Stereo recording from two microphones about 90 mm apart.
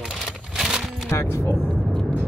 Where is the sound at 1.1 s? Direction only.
30° left (ahead or behind).